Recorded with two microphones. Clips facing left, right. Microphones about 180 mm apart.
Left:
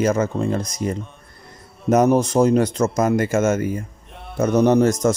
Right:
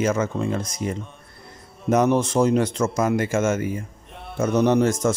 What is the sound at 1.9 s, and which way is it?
Speech, 40° left (ahead or behind).